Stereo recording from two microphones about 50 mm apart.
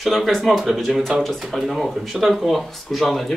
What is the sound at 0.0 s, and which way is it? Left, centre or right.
Speech, centre.